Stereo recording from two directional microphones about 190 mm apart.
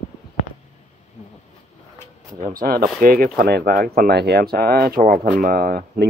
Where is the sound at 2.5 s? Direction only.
50° right (ahead or behind).